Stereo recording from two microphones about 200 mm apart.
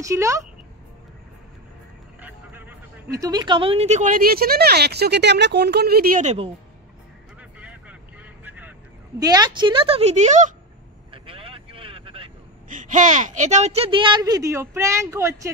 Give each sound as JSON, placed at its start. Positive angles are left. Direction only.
{"t": 0.0, "sound": "speech", "side_deg": -15}
{"t": 2.2, "sound": "speech", "side_deg": -10}
{"t": 8.5, "sound": "vehicle", "side_deg": -10}
{"t": 9.2, "sound": "speech", "side_deg": -20}
{"t": 11.1, "sound": "vehicle", "side_deg": -25}
{"t": 12.6, "sound": "speech", "side_deg": -40}